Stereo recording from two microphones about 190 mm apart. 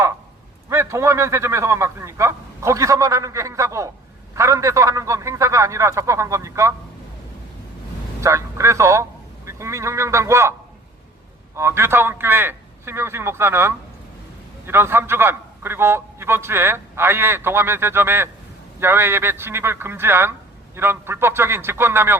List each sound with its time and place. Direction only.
0.7 s a man's voice: 15° right (ahead or behind)
8.2 s a man's voice: 15° right (ahead or behind)
11.5 s a man's voice: 15° right (ahead or behind)